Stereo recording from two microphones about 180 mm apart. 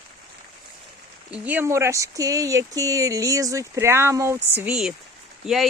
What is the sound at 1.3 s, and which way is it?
Speech, 10° right (ahead or behind).